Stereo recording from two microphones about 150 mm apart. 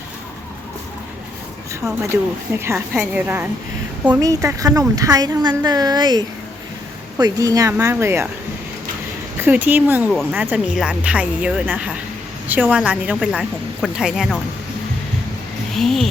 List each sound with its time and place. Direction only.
2.5 s speech: 15° right (ahead or behind)
9.4 s speech: 10° right (ahead or behind)
15.7 s speech: centre (ahead or behind)